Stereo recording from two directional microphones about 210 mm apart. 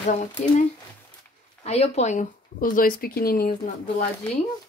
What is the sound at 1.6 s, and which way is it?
Speech, 30° left (ahead or behind).